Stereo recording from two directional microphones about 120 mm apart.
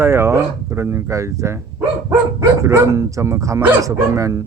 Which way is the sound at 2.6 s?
25° right (ahead or behind).